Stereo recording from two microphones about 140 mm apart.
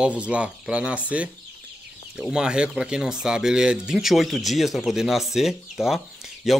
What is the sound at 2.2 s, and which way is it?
A man's voice, 5° right (ahead or behind).